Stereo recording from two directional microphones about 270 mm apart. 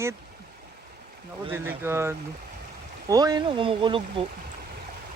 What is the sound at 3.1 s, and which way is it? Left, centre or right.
Speech, centre.